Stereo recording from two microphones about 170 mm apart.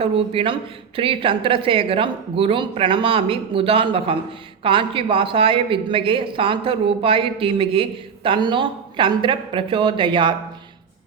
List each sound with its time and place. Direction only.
0.0 s a woman's voice: 35° right (ahead or behind)